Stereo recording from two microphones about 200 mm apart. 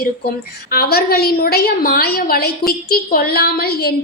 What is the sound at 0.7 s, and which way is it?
A woman's voice, 50° left (ahead or behind).